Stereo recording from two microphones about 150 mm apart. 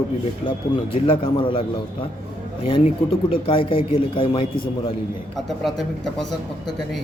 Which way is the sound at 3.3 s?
35° left (ahead or behind).